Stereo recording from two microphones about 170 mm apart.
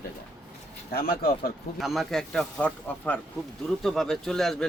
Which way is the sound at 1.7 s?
Centre (ahead or behind).